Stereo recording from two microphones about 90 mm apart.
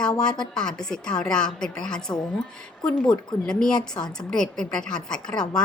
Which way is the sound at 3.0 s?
55° left (ahead or behind).